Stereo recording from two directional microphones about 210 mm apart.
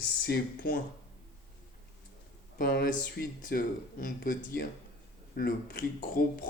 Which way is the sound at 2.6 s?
45° left (ahead or behind).